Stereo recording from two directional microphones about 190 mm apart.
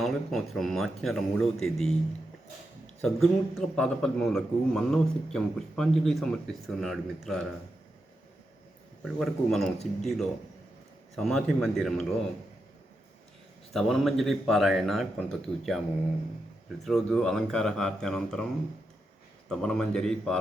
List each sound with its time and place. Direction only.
0.0 s a man's voice: centre (ahead or behind)
3.0 s a man's voice: centre (ahead or behind)
9.0 s a man's voice: centre (ahead or behind)
13.7 s a man's voice: centre (ahead or behind)
19.5 s a man's voice: 5° left (ahead or behind)